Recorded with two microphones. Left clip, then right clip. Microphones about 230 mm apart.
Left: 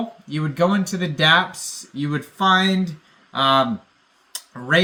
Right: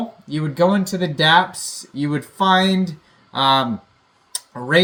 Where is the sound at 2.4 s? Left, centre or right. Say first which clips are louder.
Right 1 dB; centre.